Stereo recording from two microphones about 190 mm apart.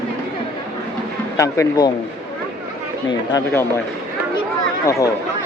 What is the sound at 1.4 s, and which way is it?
Speech, 20° left (ahead or behind).